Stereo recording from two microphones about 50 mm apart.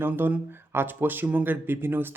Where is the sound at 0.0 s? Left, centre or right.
Right.